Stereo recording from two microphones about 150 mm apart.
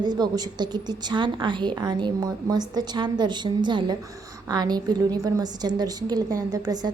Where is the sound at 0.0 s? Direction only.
30° right (ahead or behind).